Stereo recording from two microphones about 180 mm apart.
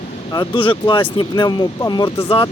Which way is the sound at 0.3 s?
30° left (ahead or behind).